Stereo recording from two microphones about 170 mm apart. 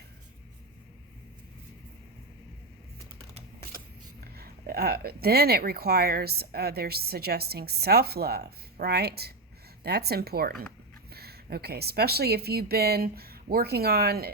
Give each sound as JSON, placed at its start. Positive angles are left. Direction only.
{"t": 4.4, "sound": "speech", "side_deg": -65}